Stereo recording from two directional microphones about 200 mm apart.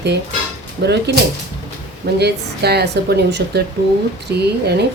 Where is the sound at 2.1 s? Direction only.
55° right (ahead or behind).